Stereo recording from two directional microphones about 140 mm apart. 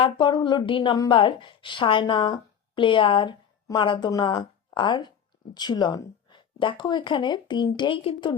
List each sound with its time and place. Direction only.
0.0 s a woman's voice: 35° left (ahead or behind)